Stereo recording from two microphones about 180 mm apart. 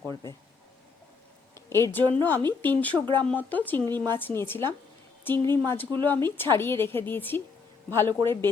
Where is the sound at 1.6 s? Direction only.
15° left (ahead or behind).